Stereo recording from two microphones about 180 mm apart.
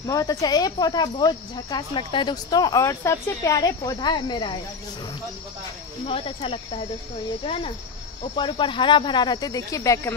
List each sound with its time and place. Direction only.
0.0 s speech: 20° left (ahead or behind)
6.0 s speech: 30° left (ahead or behind)